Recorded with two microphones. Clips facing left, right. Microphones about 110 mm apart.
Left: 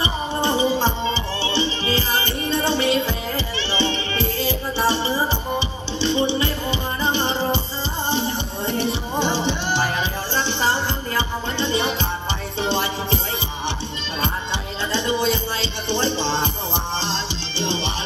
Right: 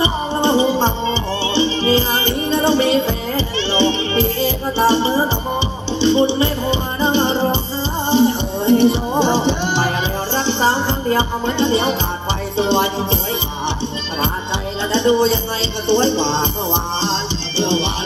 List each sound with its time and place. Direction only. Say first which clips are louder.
0.0 s music: right 5 dB; 25° right (ahead or behind)
8.7 s music: right 9 dB; 20° right (ahead or behind)
14.9 s music: right 7 dB; 25° right (ahead or behind)